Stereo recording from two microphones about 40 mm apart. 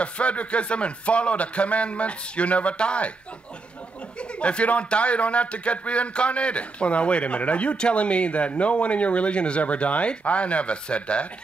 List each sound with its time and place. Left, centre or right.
0.0 s a man's voice: left
4.2 s a man's voice: left